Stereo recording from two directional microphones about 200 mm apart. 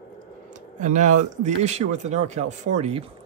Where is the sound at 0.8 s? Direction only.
40° right (ahead or behind).